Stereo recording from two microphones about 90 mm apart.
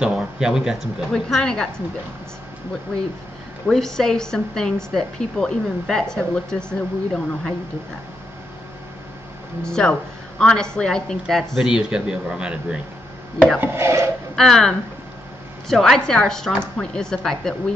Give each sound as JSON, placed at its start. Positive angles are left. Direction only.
{"t": 0.0, "sound": "speech", "side_deg": -10}
{"t": 1.1, "sound": "a woman's voice", "side_deg": 5}
{"t": 3.6, "sound": "a woman's voice", "side_deg": 5}
{"t": 9.6, "sound": "a woman's voice", "side_deg": 10}
{"t": 13.6, "sound": "filing", "side_deg": -30}
{"t": 14.3, "sound": "a woman's voice", "side_deg": 5}